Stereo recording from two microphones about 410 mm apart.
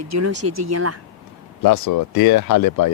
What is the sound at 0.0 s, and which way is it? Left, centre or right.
Speech, right.